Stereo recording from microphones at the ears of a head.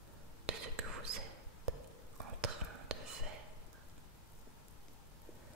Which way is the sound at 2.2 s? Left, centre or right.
Right.